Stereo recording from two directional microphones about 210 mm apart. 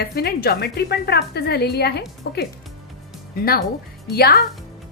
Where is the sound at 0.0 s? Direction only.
50° left (ahead or behind).